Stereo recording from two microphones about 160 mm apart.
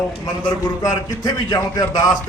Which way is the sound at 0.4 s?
25° left (ahead or behind).